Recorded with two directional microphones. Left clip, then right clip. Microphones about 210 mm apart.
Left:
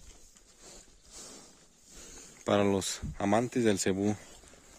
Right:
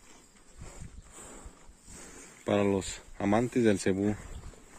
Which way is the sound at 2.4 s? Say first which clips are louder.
Even; 25° left (ahead or behind).